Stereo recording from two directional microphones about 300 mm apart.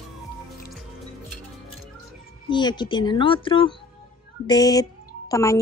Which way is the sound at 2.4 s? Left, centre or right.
Centre.